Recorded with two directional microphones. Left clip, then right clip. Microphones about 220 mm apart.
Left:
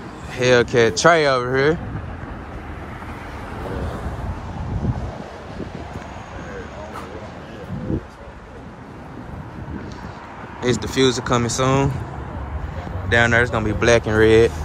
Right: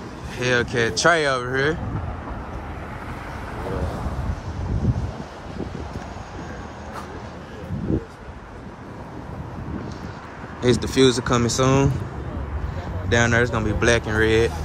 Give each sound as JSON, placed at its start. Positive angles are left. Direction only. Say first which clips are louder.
{"t": 0.4, "sound": "speech", "louder": "left 6 dB", "side_deg": -10}
{"t": 10.6, "sound": "speech", "louder": "right 1 dB", "side_deg": -20}
{"t": 13.1, "sound": "speech", "louder": "left 3 dB", "side_deg": -20}